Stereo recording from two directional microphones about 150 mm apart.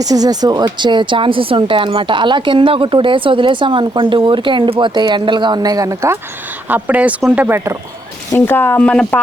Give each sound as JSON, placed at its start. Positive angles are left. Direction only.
{"t": 0.0, "sound": "speech", "side_deg": -25}
{"t": 8.4, "sound": "speech", "side_deg": 15}